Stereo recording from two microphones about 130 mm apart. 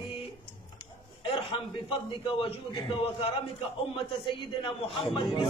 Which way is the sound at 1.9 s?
45° left (ahead or behind).